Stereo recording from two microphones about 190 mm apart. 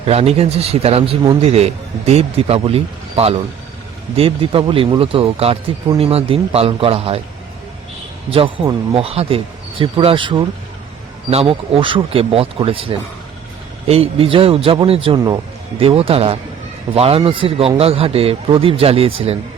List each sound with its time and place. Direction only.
0.0 s a man's voice: 35° right (ahead or behind)
8.3 s a man's voice: 25° right (ahead or behind)